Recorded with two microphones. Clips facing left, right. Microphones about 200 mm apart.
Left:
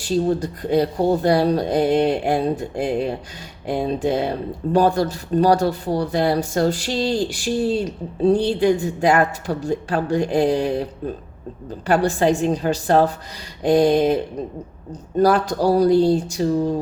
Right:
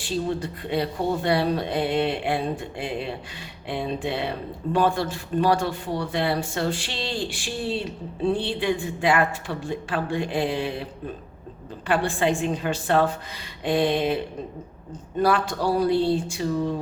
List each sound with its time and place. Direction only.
0.0 s speech: 40° left (ahead or behind)